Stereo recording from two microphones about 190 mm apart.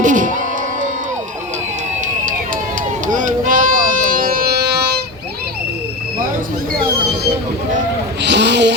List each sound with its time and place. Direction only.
0.0 s music: 40° right (ahead or behind)
3.1 s music: 40° right (ahead or behind)
8.2 s a sound: 65° right (ahead or behind)